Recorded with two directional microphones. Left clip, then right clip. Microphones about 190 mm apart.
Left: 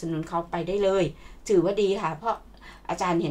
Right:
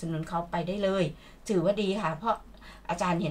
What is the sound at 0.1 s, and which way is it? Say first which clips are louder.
Speech: left 2 dB; 35° left (ahead or behind).